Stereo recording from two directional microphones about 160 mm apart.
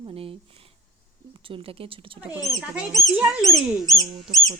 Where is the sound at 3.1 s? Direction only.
5° right (ahead or behind).